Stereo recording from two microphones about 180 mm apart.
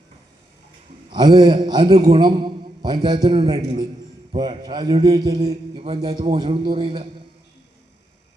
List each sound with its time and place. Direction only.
1.1 s a man's voice: 25° right (ahead or behind)